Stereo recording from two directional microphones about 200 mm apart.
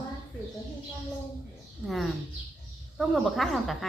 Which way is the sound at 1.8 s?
Centre (ahead or behind).